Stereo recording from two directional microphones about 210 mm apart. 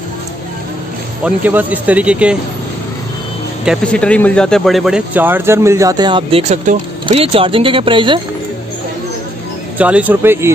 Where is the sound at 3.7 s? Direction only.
5° left (ahead or behind); by 8.2 s 25° right (ahead or behind).